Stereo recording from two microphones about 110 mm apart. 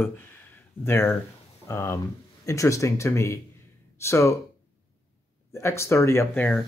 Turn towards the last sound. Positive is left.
turn(degrees=15)  # may be behind; listen again after turning